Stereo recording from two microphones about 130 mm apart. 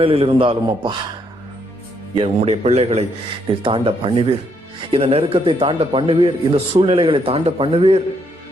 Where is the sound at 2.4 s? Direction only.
55° right (ahead or behind).